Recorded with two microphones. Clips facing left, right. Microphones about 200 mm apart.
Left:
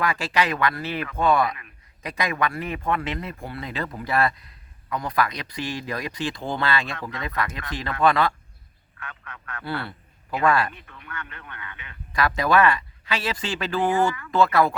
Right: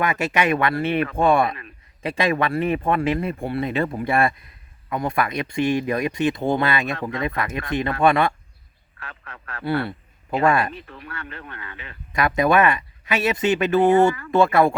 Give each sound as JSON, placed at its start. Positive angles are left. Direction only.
{"t": 0.0, "sound": "speech", "side_deg": -25}
{"t": 12.1, "sound": "speech", "side_deg": -20}